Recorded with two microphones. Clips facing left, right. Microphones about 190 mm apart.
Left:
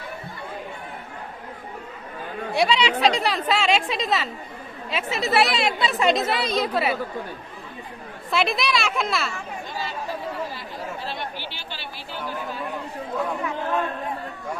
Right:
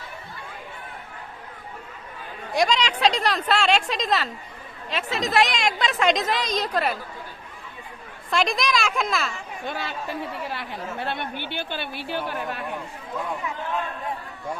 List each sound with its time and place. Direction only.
2.6 s a woman's voice: 5° left (ahead or behind)
8.3 s speech: 5° left (ahead or behind)
9.6 s chatter: 65° right (ahead or behind)
10.5 s speech: 65° right (ahead or behind)